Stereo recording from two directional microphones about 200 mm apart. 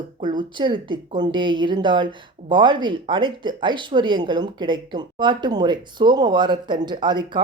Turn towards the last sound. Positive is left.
turn(degrees=-20)  # may be behind; listen again after turning